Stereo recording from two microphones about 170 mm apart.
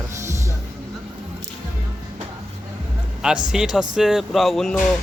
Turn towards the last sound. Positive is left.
turn(degrees=0)  # may be behind; listen again after turning